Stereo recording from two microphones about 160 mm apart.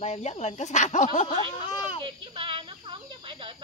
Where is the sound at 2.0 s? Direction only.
30° right (ahead or behind).